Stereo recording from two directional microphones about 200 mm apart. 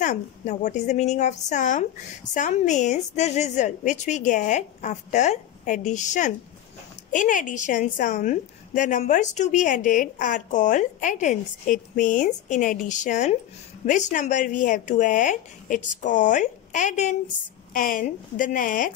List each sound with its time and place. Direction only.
0.0 s a woman's voice: 35° left (ahead or behind)